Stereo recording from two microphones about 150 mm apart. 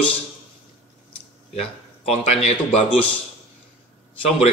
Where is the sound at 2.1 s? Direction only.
40° left (ahead or behind).